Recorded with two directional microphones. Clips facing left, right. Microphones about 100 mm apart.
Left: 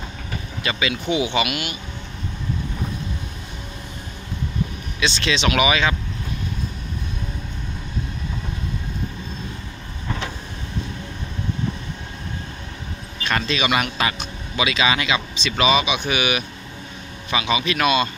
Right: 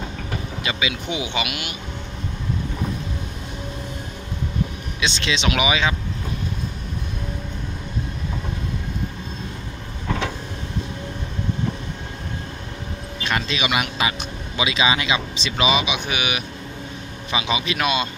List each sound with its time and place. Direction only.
0.7 s speech: 15° right (ahead or behind)
5.0 s speech: 20° right (ahead or behind)
13.3 s speech: 15° right (ahead or behind)